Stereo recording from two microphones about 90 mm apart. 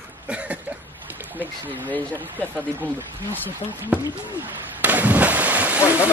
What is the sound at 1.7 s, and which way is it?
Speech, 20° left (ahead or behind).